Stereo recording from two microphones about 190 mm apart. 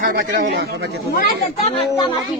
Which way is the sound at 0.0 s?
55° right (ahead or behind).